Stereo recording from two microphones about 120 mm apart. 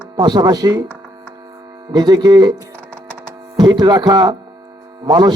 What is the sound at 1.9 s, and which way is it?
Speech, 35° right (ahead or behind).